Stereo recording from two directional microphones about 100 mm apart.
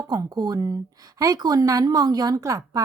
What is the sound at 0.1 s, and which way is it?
Speech, 40° right (ahead or behind).